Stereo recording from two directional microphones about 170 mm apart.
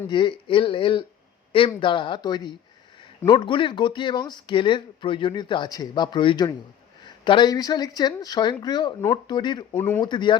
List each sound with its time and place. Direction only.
0.1 s speech: 30° left (ahead or behind)
9.7 s speech: 10° left (ahead or behind)
10.0 s speech: 25° left (ahead or behind)